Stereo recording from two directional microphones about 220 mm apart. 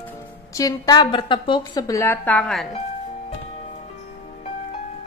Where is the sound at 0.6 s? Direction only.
15° left (ahead or behind).